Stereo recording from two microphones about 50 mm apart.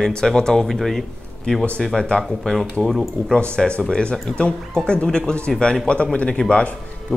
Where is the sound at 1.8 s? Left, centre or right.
Centre.